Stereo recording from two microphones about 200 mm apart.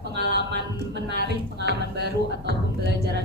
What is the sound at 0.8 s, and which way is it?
Speech, 55° right (ahead or behind).